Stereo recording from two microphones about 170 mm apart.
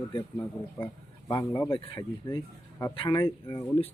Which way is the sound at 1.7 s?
30° left (ahead or behind).